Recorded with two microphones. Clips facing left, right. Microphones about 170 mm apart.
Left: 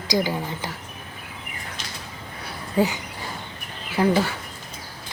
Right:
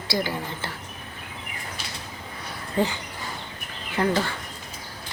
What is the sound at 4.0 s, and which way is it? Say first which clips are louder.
Speech: left 3 dB; 10° left (ahead or behind).